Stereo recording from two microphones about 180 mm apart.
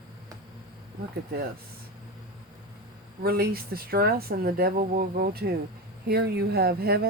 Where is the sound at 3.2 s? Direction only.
60° right (ahead or behind).